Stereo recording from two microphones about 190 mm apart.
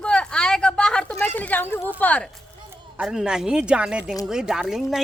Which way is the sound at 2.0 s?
10° left (ahead or behind).